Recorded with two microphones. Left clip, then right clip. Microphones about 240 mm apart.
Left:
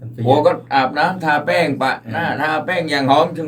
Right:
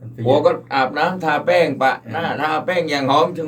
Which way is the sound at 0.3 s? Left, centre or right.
Centre.